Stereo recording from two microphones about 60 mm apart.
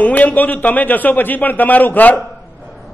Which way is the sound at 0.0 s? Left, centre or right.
Left.